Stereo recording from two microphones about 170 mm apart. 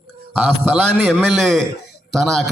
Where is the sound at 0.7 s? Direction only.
Centre (ahead or behind).